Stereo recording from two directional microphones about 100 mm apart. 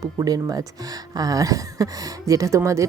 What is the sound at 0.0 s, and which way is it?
Speech, 35° right (ahead or behind).